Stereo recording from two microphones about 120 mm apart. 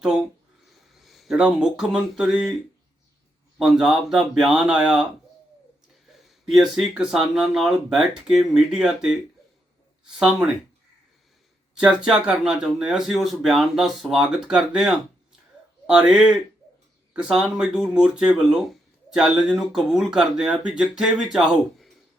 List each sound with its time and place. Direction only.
0.7 s speech: centre (ahead or behind)
3.6 s speech: 5° right (ahead or behind)
6.1 s speech: centre (ahead or behind)
10.2 s speech: 5° right (ahead or behind)
11.8 s speech: 5° right (ahead or behind)